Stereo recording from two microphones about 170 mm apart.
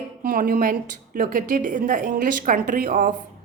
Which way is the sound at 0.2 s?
55° right (ahead or behind).